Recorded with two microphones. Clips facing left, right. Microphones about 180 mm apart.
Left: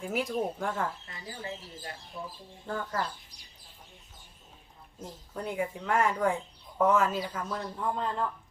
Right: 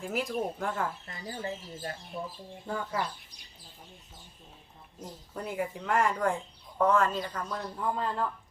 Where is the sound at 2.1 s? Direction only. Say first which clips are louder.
Right 2 dB; 25° right (ahead or behind).